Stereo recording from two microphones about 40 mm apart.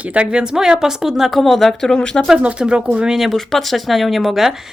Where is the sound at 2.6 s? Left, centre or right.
Right.